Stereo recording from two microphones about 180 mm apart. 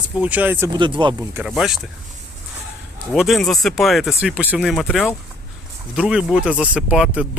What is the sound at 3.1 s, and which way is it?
Speech, centre (ahead or behind).